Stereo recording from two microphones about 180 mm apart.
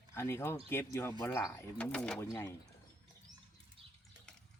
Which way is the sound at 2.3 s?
20° left (ahead or behind).